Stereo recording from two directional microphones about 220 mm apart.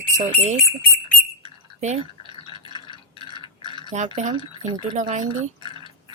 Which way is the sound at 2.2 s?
25° left (ahead or behind).